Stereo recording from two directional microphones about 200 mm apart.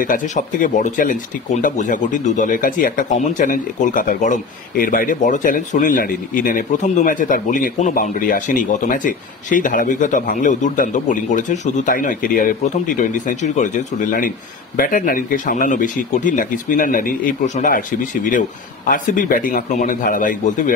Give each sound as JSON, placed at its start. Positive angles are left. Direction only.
{"t": 0.0, "sound": "speech", "side_deg": 40}